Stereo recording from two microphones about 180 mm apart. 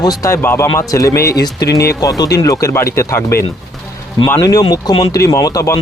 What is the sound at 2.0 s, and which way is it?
Speech, 20° left (ahead or behind).